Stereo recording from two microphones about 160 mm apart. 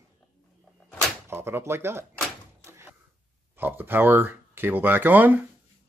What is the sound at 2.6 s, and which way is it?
Door, 15° right (ahead or behind).